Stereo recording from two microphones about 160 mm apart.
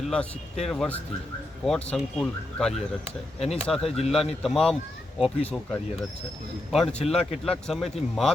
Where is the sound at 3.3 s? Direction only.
40° left (ahead or behind).